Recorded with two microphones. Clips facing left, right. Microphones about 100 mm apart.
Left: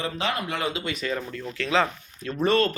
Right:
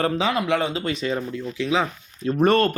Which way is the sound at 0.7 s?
35° right (ahead or behind).